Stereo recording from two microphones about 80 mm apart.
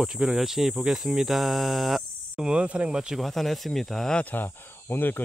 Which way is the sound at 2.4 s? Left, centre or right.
Centre.